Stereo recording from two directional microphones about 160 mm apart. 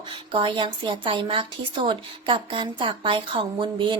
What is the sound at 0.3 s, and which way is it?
A woman's voice, 30° right (ahead or behind).